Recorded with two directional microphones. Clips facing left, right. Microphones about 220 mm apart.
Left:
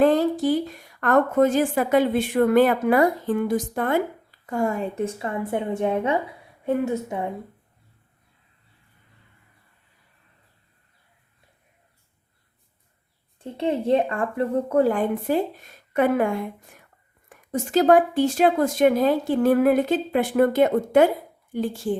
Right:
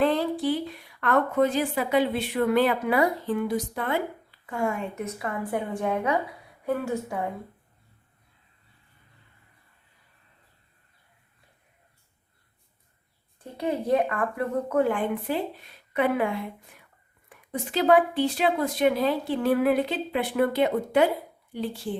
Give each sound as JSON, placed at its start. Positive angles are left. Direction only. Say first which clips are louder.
{"t": 0.0, "sound": "a woman's voice", "louder": "left 5 dB", "side_deg": 45}
{"t": 13.4, "sound": "speech", "louder": "left 4 dB", "side_deg": 25}